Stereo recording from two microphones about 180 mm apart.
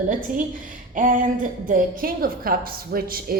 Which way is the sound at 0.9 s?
45° right (ahead or behind).